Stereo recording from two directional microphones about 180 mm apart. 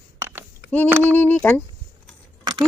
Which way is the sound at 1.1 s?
10° left (ahead or behind).